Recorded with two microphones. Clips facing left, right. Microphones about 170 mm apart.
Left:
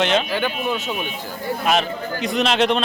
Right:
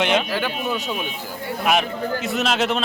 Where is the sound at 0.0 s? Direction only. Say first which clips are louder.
Left 1 dB; 15° right (ahead or behind).